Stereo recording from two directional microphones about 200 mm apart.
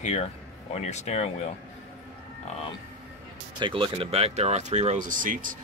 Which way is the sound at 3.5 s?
25° right (ahead or behind).